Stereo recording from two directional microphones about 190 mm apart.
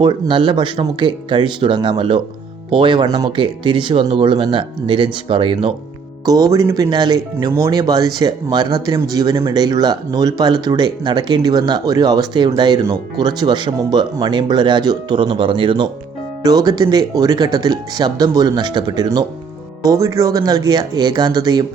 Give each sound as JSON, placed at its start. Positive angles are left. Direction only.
{"t": 0.0, "sound": "speech", "side_deg": -25}